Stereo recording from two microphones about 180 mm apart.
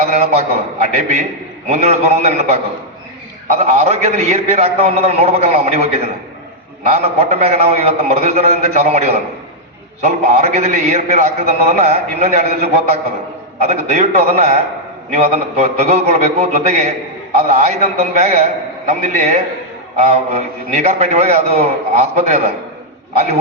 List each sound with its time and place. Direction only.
0.0 s a sound: 35° right (ahead or behind)
1.6 s a man's voice: 35° right (ahead or behind)
13.6 s a man's voice: 35° right (ahead or behind)